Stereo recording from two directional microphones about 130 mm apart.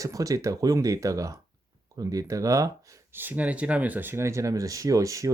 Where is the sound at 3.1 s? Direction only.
15° right (ahead or behind).